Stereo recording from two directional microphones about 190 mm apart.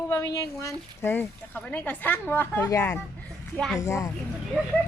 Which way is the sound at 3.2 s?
Centre (ahead or behind).